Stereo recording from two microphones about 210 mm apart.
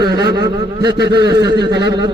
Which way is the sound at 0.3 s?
20° right (ahead or behind).